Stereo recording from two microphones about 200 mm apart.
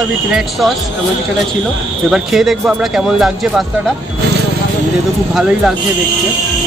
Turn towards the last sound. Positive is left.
turn(degrees=-5)  # may be behind; listen again after turning